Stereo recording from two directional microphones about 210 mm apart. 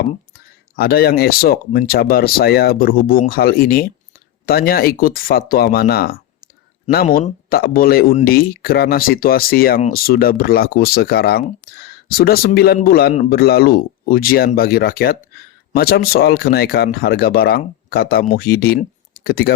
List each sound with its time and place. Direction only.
0.8 s speech: 50° left (ahead or behind)